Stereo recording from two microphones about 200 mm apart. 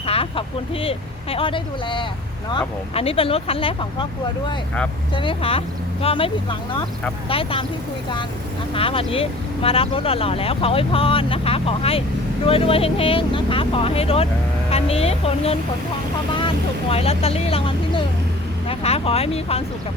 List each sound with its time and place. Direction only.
0.0 s speech: 30° left (ahead or behind)
5.1 s speech: 25° left (ahead or behind)
8.7 s speech: 25° left (ahead or behind)
16.9 s speech: 30° left (ahead or behind)